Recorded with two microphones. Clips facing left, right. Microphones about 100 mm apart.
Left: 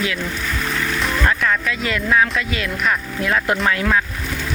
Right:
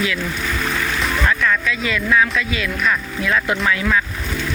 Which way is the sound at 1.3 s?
30° left (ahead or behind).